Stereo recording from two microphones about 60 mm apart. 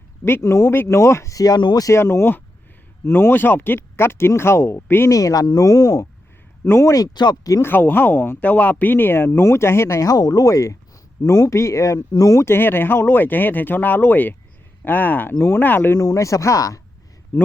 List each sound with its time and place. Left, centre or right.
0.3 s speech: left
1.4 s speech: left
1.9 s speech: left
5.0 s speech: left
7.6 s speech: left
10.1 s speech: left
11.2 s speech: left
11.4 s speech: left
12.5 s speech: left
16.0 s speech: left